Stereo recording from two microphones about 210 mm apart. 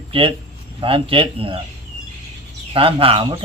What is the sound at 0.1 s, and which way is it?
Speech, 25° right (ahead or behind).